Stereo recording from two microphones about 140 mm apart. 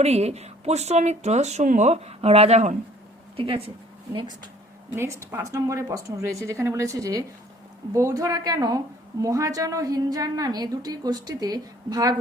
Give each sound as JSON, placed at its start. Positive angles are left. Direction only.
{"t": 0.0, "sound": "speech", "side_deg": -50}
{"t": 4.9, "sound": "a woman's voice", "side_deg": -20}